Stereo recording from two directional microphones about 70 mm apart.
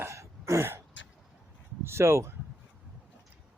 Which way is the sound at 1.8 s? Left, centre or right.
Right.